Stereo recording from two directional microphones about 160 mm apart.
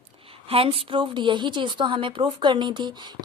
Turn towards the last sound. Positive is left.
turn(degrees=-30)  # may be behind; listen again after turning